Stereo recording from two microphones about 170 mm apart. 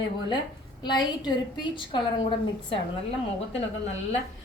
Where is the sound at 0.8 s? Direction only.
25° left (ahead or behind).